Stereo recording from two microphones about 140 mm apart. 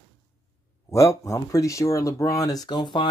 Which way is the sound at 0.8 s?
20° left (ahead or behind).